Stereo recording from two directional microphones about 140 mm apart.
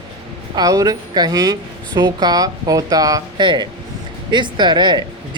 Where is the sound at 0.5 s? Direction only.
25° right (ahead or behind).